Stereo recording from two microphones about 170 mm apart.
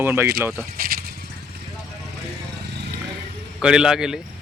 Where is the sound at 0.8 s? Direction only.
60° right (ahead or behind).